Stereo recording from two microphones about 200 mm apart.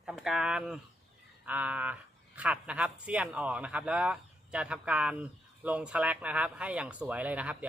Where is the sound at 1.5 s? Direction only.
5° right (ahead or behind).